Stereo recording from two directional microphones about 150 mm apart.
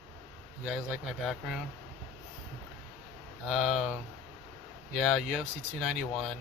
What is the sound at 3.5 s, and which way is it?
Speech, centre (ahead or behind).